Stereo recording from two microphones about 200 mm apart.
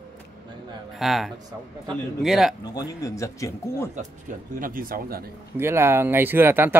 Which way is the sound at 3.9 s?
40° right (ahead or behind).